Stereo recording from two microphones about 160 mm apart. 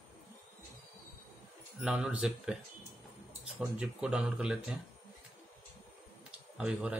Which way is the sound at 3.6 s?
5° right (ahead or behind).